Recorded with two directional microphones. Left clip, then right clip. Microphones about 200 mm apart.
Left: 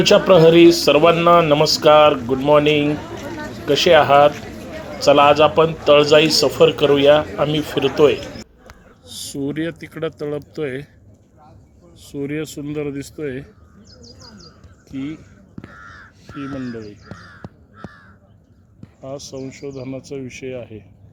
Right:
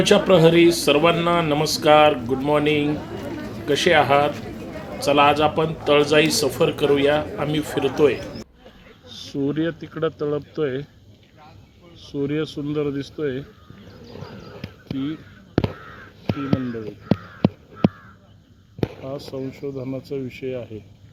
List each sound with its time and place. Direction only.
0.0 s a man's voice: 5° left (ahead or behind)
9.0 s speech: 10° left (ahead or behind)
12.1 s speech: 10° left (ahead or behind)
14.9 s speech: 45° left (ahead or behind)
16.4 s speech: 30° right (ahead or behind)
19.3 s a man's voice: centre (ahead or behind)